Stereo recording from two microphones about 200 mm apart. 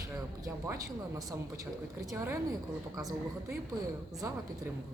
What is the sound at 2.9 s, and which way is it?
Speech, 15° right (ahead or behind).